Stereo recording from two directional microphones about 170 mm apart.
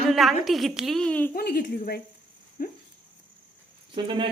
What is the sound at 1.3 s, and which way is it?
A woman's voice, 65° left (ahead or behind).